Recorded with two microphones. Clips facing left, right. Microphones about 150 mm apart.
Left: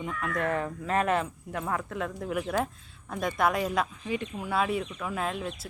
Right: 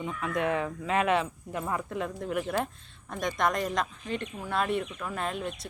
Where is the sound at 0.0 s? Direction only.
Centre (ahead or behind).